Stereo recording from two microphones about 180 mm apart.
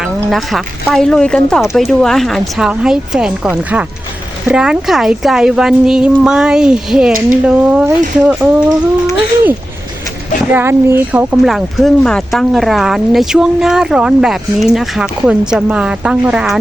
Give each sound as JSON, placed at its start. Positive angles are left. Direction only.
{"t": 0.0, "sound": "speech", "side_deg": 0}
{"t": 10.5, "sound": "speech", "side_deg": -15}